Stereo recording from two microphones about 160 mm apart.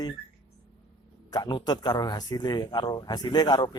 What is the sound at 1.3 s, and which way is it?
Speech, 25° left (ahead or behind).